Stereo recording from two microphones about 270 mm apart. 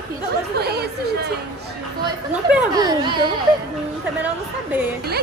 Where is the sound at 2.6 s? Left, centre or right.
Centre.